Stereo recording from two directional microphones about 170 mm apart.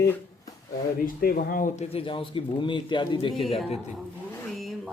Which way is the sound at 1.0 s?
60° left (ahead or behind).